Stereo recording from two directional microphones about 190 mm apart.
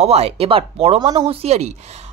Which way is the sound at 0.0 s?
35° right (ahead or behind).